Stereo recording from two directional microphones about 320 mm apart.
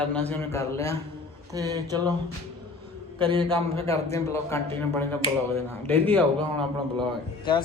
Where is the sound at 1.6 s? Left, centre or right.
Centre.